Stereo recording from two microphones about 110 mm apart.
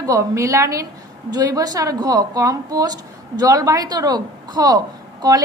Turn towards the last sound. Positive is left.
turn(degrees=-35)  # may be behind; listen again after turning